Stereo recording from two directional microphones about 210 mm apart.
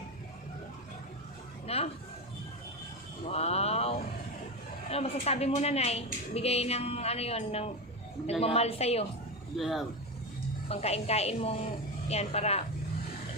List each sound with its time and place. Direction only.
1.6 s a sound: 30° left (ahead or behind)
3.2 s mantra: 30° left (ahead or behind)
4.9 s a woman's voice: 30° left (ahead or behind)
9.6 s speech: centre (ahead or behind)
10.7 s a woman's voice: 30° left (ahead or behind)